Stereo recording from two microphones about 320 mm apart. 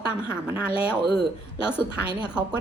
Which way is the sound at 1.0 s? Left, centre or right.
Right.